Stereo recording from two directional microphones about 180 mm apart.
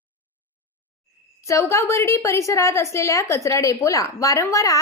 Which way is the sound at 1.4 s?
15° left (ahead or behind).